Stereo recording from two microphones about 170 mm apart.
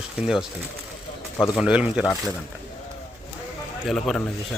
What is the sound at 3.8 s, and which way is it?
Speech, centre (ahead or behind).